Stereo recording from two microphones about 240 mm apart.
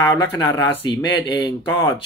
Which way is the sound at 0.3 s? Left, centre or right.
Centre.